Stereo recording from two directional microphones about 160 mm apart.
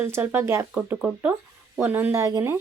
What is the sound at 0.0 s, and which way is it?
A woman's voice, 15° right (ahead or behind).